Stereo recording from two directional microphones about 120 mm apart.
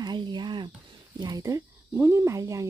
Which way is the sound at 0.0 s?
35° right (ahead or behind).